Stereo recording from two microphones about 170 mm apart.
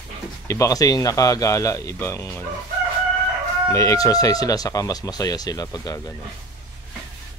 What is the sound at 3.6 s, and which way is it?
Speech, 15° left (ahead or behind).